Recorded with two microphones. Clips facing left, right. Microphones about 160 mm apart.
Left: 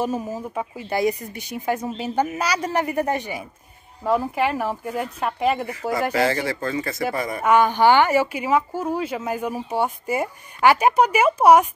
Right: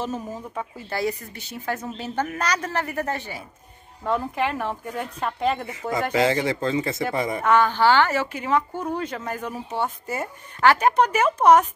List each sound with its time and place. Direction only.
0.0 s speech: 10° left (ahead or behind)
6.1 s speech: 20° right (ahead or behind)
7.4 s speech: 15° left (ahead or behind)